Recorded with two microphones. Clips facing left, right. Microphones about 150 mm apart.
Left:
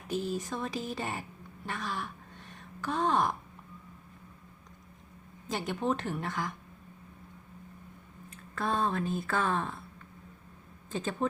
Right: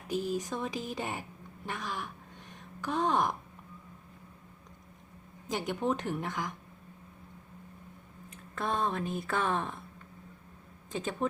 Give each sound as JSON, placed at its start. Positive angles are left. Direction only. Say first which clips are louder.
{"t": 0.1, "sound": "speech", "louder": "right 1 dB", "side_deg": -15}
{"t": 5.5, "sound": "speech", "louder": "even", "side_deg": -15}
{"t": 8.3, "sound": "speech", "louder": "left 1 dB", "side_deg": -20}
{"t": 10.9, "sound": "speech", "louder": "left 1 dB", "side_deg": -15}